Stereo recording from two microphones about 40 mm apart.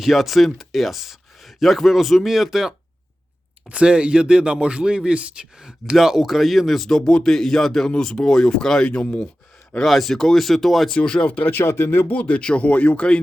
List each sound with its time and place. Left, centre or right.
0.0 s speech: centre
3.7 s a man's voice: right
6.0 s speech: centre
6.8 s speech: centre
9.8 s speech: centre
10.9 s speech: left
11.3 s speech: left
11.5 s speech: left
12.0 s speech: left
12.3 s speech: left